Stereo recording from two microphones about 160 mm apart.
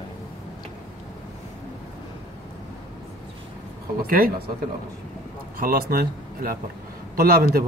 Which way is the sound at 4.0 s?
70° right (ahead or behind).